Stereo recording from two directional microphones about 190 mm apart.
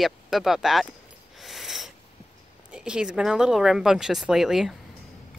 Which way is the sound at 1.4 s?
Centre (ahead or behind).